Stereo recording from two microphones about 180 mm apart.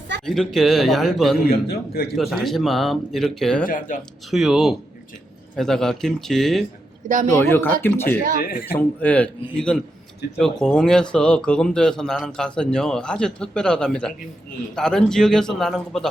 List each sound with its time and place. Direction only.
0.3 s speech: centre (ahead or behind)
1.5 s a man's voice: 60° left (ahead or behind)
2.1 s speech: centre (ahead or behind)
3.7 s speech: 45° left (ahead or behind)
4.3 s speech: centre (ahead or behind)
7.4 s a man's voice: 10° left (ahead or behind)
8.4 s speech: 55° left (ahead or behind)
9.0 s a man's voice: 10° left (ahead or behind)